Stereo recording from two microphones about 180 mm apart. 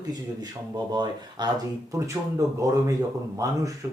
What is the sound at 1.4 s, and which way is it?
Speech, 25° right (ahead or behind).